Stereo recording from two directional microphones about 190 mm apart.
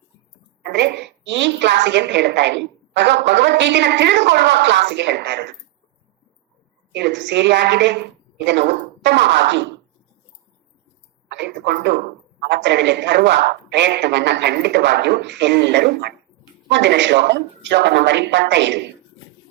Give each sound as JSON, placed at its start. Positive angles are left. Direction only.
{"t": 0.6, "sound": "a woman's voice", "side_deg": -65}
{"t": 6.9, "sound": "a woman's voice", "side_deg": -70}
{"t": 11.3, "sound": "a sound", "side_deg": -65}
{"t": 12.5, "sound": "a woman's voice", "side_deg": -70}